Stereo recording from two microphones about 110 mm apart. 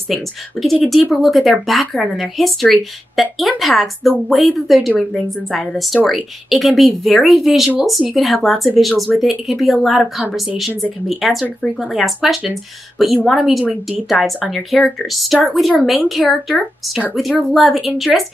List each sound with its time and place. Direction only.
0.1 s a woman's voice: centre (ahead or behind)